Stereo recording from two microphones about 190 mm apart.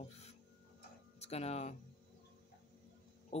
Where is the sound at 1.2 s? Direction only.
35° left (ahead or behind).